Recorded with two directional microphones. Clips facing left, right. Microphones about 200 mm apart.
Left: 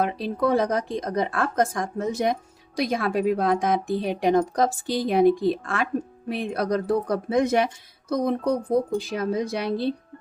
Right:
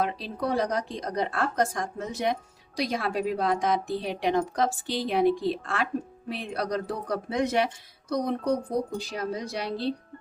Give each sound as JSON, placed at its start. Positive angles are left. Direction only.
{"t": 0.0, "sound": "speech", "side_deg": 55}
{"t": 9.0, "sound": "speech", "side_deg": 55}